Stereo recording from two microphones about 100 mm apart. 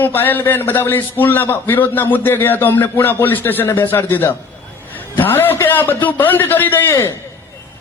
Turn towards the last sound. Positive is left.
turn(degrees=30)  # may be behind; listen again after turning